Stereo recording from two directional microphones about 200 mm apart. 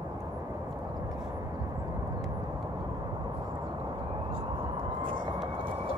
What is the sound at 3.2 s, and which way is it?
Vehicle, 20° right (ahead or behind).